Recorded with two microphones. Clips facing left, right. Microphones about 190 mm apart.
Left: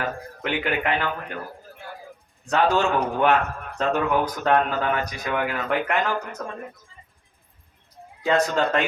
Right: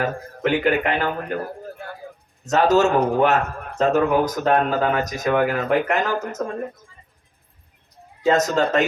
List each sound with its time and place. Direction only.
0.0 s a man's voice: 45° right (ahead or behind)
2.4 s speech: 40° right (ahead or behind)
8.3 s a man's voice: 45° right (ahead or behind)